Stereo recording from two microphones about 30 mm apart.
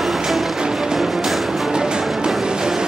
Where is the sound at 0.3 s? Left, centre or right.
Centre.